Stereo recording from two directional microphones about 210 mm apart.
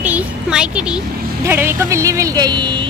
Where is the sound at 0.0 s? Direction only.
5° right (ahead or behind).